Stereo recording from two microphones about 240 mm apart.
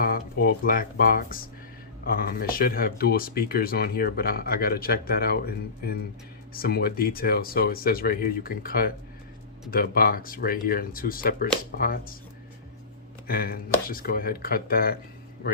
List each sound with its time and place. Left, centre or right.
0.0 s speech: left
13.2 s speech: left